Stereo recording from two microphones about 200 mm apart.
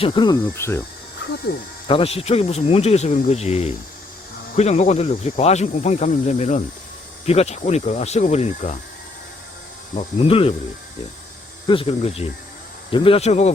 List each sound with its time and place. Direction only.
0.0 s speech: 20° left (ahead or behind)
1.5 s speech: 50° left (ahead or behind)
1.9 s speech: 30° left (ahead or behind)
9.9 s speech: 30° left (ahead or behind)
11.7 s speech: 25° left (ahead or behind)